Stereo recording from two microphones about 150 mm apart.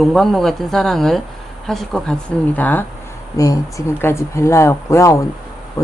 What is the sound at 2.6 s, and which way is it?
A woman's voice, 10° left (ahead or behind).